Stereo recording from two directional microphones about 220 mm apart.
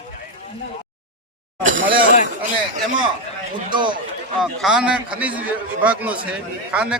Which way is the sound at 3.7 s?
20° right (ahead or behind).